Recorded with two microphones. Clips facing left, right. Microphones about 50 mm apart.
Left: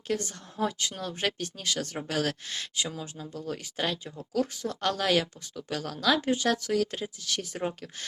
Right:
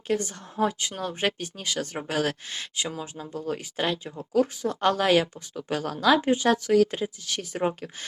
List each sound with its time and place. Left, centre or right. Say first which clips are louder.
0.1 s speech: right 4 dB; centre